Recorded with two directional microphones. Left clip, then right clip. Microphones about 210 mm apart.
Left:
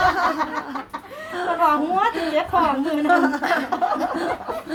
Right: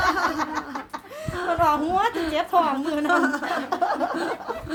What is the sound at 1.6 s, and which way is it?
A woman's voice, 50° right (ahead or behind).